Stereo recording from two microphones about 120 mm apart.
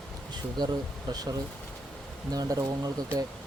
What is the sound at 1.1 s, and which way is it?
Speech, 30° right (ahead or behind).